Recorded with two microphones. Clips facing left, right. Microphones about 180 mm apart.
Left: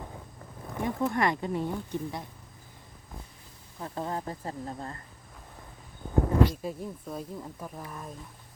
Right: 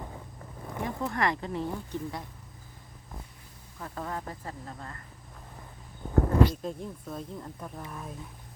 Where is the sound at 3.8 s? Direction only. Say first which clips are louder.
Left 3 dB; 30° left (ahead or behind).